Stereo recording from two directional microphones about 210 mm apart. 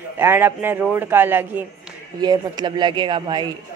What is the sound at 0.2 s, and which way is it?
Speech, 10° right (ahead or behind).